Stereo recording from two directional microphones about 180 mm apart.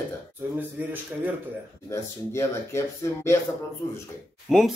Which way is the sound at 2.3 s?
15° left (ahead or behind).